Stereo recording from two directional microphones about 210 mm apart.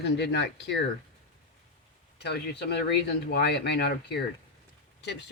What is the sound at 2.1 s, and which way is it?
Speech, 50° left (ahead or behind).